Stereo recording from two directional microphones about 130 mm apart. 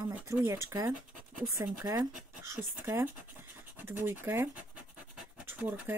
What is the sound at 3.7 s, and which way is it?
Scratch, 15° right (ahead or behind).